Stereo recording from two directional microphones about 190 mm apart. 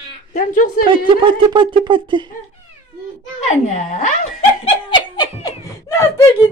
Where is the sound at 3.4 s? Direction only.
35° left (ahead or behind); by 6.2 s 15° left (ahead or behind).